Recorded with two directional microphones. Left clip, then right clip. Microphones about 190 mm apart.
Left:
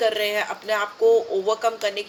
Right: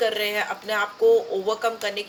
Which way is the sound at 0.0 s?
45° left (ahead or behind).